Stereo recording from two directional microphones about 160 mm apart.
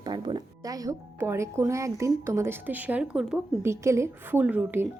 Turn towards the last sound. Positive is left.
turn(degrees=-10)  # may be behind; listen again after turning